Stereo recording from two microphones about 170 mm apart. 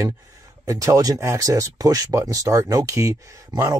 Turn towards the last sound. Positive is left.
turn(degrees=-20)  # may be behind; listen again after turning